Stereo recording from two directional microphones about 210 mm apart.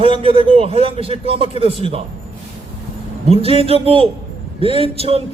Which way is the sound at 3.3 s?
25° right (ahead or behind).